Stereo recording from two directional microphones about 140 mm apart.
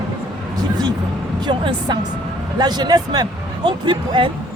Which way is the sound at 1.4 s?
30° right (ahead or behind).